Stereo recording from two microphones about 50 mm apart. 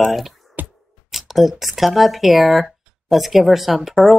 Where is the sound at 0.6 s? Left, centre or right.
Right.